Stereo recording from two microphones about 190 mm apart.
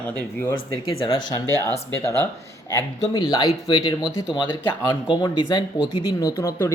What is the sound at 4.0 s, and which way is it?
Speech, 5° right (ahead or behind).